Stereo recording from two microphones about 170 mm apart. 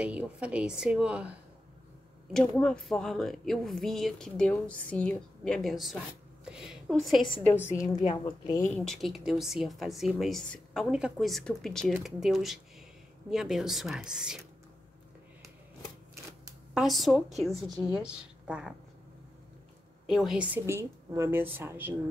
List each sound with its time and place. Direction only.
0.0 s a woman's voice: 5° right (ahead or behind)
2.3 s speech: 5° left (ahead or behind)
8.0 s a woman's voice: 35° left (ahead or behind)
8.5 s speech: 20° left (ahead or behind)
8.7 s speech: centre (ahead or behind)
16.7 s speech: centre (ahead or behind)
17.6 s a woman's voice: 20° right (ahead or behind)
17.9 s speech: 5° right (ahead or behind)
20.1 s a woman's voice: centre (ahead or behind)